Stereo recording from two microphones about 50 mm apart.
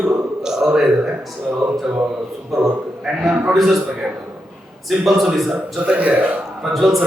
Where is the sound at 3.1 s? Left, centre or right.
Centre.